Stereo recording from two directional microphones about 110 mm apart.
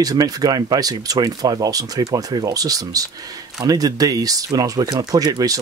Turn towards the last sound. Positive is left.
turn(degrees=-35)  # may be behind; listen again after turning